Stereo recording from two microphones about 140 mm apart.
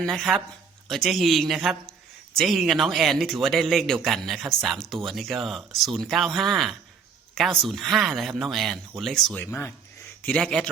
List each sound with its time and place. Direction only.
0.0 s speech: centre (ahead or behind)
9.4 s speech: 15° left (ahead or behind)